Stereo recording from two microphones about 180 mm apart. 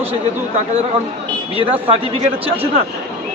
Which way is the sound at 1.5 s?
30° right (ahead or behind).